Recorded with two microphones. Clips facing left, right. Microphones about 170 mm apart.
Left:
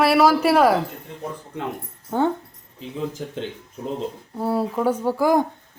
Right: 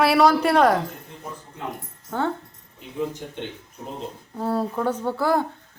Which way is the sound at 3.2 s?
90° left.